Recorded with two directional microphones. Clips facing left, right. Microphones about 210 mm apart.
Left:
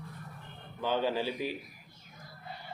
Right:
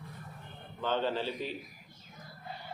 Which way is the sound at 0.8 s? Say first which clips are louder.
Left 1 dB; 10° left (ahead or behind).